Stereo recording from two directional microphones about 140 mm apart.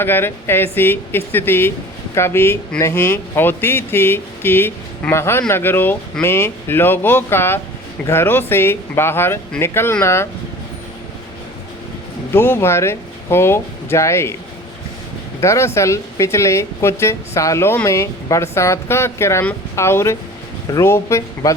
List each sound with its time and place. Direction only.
0.0 s speech: 15° left (ahead or behind)
12.3 s speech: 15° left (ahead or behind)
15.4 s speech: 20° left (ahead or behind)